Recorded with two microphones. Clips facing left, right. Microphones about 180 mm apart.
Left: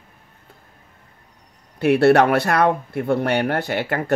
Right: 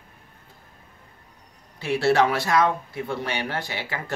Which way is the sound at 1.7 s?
60° left (ahead or behind).